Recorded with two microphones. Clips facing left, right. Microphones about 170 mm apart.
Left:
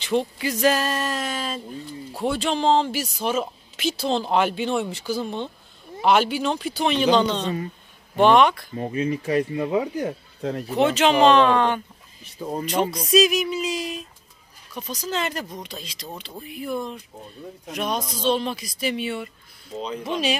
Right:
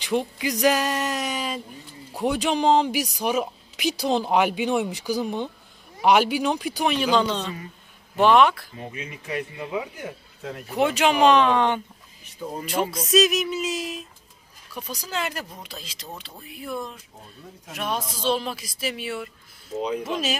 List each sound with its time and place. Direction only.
0.0 s speech: 15° right (ahead or behind)
8.7 s speech: 35° left (ahead or behind)
10.8 s speech: 10° right (ahead or behind)
12.9 s speech: centre (ahead or behind)